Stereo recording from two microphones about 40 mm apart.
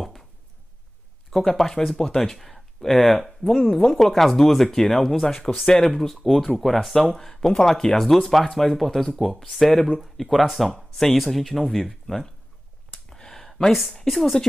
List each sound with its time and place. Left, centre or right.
1.6 s speech: centre
9.8 s speech: centre
10.1 s speech: centre
10.7 s speech: centre
13.1 s a sound: centre
13.7 s speech: centre